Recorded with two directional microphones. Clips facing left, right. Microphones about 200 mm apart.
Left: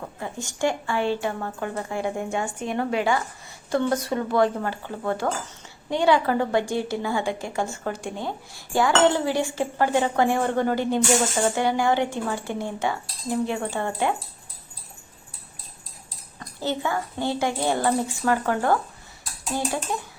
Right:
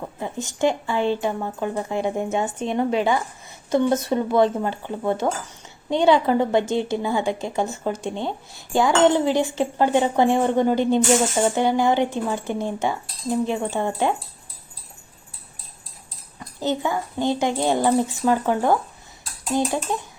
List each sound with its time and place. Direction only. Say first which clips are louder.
0.2 s a woman's voice: right 4 dB; 20° right (ahead or behind)
16.4 s speech: right 3 dB; 20° right (ahead or behind)